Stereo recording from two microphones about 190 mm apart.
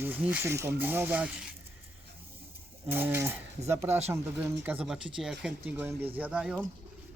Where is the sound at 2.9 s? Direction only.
10° right (ahead or behind).